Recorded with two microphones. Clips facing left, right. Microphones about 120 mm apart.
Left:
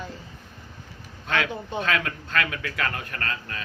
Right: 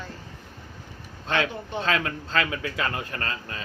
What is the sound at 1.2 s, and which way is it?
A man's voice, 30° right (ahead or behind).